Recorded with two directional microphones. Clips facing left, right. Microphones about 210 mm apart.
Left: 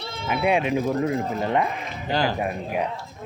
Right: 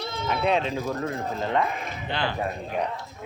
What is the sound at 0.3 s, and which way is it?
Speech, 10° left (ahead or behind).